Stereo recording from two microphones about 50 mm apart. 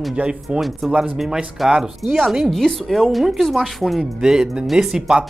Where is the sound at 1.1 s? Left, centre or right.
Centre.